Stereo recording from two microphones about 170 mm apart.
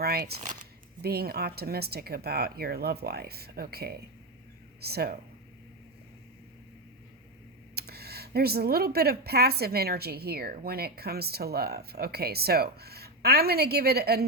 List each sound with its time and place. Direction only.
0.0 s speech: 70° right (ahead or behind)
7.8 s speech: 70° right (ahead or behind)